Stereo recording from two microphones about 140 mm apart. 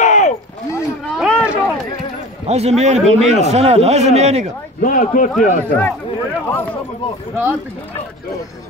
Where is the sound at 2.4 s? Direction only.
50° right (ahead or behind).